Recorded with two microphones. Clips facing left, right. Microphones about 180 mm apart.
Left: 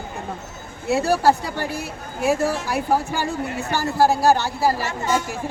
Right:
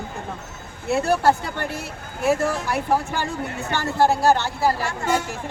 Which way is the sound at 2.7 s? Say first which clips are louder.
Left 1 dB; 10° left (ahead or behind).